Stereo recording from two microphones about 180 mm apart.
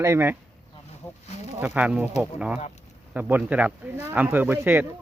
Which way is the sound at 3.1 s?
10° right (ahead or behind).